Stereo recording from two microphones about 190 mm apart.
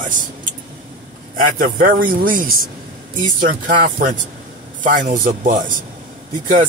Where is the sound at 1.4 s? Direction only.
45° right (ahead or behind).